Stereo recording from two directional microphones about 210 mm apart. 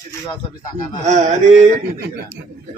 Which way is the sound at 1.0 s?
35° right (ahead or behind).